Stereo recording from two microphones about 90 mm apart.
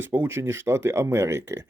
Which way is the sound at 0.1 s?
25° right (ahead or behind).